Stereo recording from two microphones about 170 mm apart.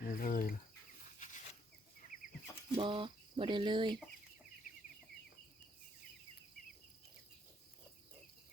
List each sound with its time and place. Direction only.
0.0 s bird: 55° left (ahead or behind)
2.7 s speech: 30° right (ahead or behind)